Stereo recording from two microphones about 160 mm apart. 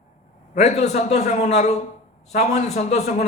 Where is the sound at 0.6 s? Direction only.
45° left (ahead or behind).